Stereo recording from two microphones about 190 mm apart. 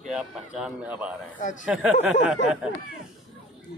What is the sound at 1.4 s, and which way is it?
Speech, 40° left (ahead or behind).